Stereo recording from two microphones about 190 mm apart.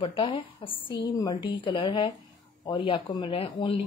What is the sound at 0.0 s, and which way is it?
Speech, 25° left (ahead or behind).